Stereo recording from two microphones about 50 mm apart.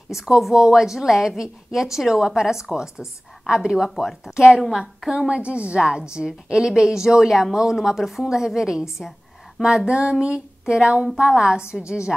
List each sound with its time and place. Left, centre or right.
0.1 s a woman's voice: centre
5.3 s a woman's voice: right